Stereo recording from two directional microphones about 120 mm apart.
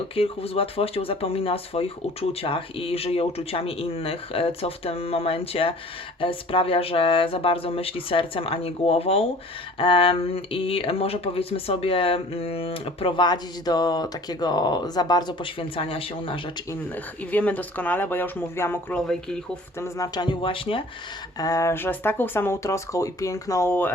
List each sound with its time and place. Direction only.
0.2 s speech: 55° left (ahead or behind)
16.9 s speech: 15° left (ahead or behind)
18.9 s speech: 5° left (ahead or behind)
19.8 s speech: 30° left (ahead or behind); by 20.8 s 45° left (ahead or behind)
21.3 s speech: 30° left (ahead or behind)